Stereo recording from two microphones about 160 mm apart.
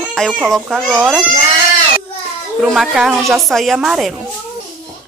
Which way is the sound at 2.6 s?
Centre (ahead or behind).